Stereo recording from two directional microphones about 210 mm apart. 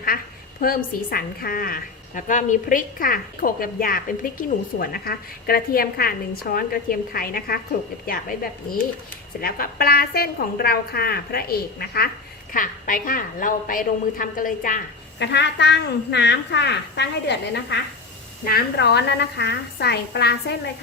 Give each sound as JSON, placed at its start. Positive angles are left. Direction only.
{"t": 0.6, "sound": "a woman's voice", "side_deg": 45}
{"t": 15.2, "sound": "a woman's voice", "side_deg": 55}